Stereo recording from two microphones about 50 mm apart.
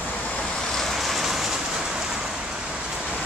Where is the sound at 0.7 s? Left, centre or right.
Centre.